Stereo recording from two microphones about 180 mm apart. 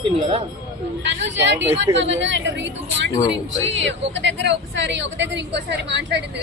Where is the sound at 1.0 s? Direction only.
80° right.